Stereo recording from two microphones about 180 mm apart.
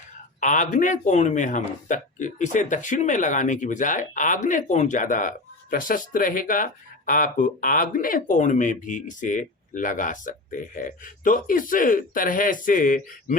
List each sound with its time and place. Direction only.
0.3 s speech: 45° left (ahead or behind)